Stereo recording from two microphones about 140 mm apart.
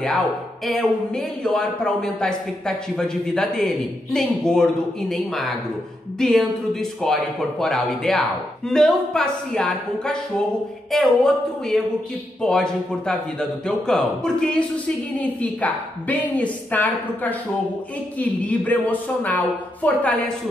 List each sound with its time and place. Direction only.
0.7 s a woman's voice: centre (ahead or behind)
18.4 s a woman's voice: 10° left (ahead or behind)